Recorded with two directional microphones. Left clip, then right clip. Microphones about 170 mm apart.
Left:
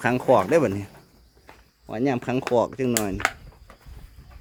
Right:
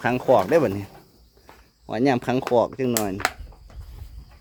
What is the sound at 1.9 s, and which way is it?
Speech, 20° right (ahead or behind).